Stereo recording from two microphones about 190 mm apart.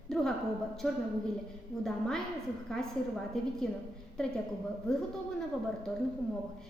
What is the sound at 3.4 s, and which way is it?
Speech, centre (ahead or behind).